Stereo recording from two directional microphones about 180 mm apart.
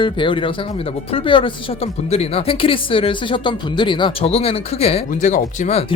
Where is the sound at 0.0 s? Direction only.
25° left (ahead or behind).